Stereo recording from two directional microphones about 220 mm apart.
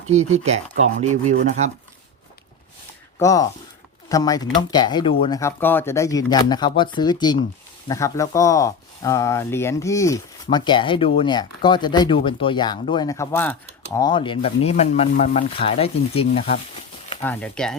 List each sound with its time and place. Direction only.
0.1 s speech: 30° right (ahead or behind)
3.2 s speech: 15° left (ahead or behind)
17.2 s speech: 5° left (ahead or behind)